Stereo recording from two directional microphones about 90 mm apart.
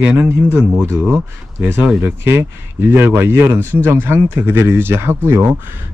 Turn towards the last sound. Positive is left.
turn(degrees=-25)  # may be behind; listen again after turning